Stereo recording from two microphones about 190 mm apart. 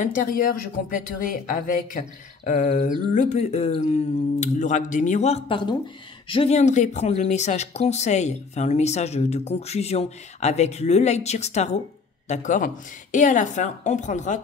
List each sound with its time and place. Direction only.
0.0 s speech: 45° left (ahead or behind)